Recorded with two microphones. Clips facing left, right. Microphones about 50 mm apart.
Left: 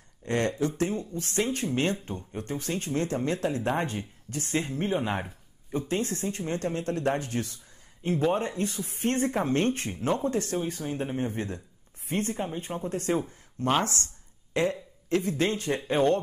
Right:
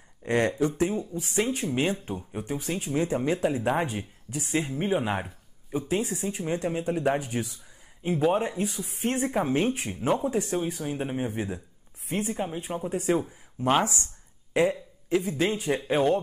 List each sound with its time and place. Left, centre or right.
0.2 s speech: right